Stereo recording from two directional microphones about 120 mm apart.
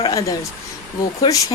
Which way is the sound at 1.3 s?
35° left (ahead or behind).